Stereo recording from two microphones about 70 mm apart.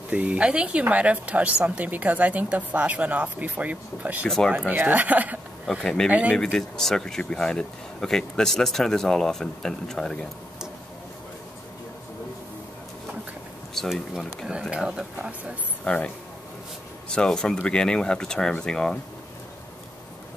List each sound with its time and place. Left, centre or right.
0.1 s a woman's voice: centre
6.3 s speech: centre
13.7 s speech: centre
15.8 s speech: centre
17.1 s speech: centre